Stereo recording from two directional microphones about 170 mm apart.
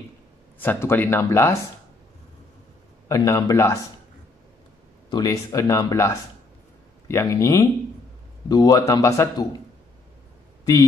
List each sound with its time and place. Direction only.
0.6 s speech: 15° left (ahead or behind)
3.1 s speech: 20° left (ahead or behind)
5.1 s a man's voice: 20° left (ahead or behind)
10.6 s a sound: 20° left (ahead or behind)